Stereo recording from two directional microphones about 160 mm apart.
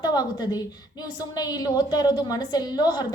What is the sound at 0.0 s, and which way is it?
A woman's voice, 25° left (ahead or behind).